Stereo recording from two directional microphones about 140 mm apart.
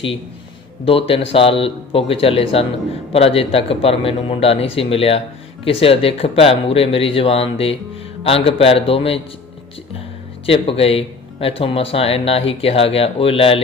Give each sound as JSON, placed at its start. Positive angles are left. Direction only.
{"t": 0.9, "sound": "speech", "side_deg": 40}
{"t": 10.4, "sound": "speech", "side_deg": 40}